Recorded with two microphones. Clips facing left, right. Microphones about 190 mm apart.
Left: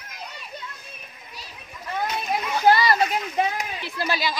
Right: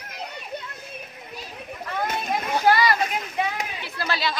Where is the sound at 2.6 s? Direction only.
30° left (ahead or behind).